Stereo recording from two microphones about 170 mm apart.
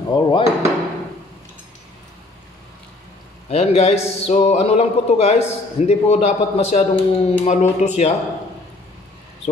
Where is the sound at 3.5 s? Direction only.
40° left (ahead or behind).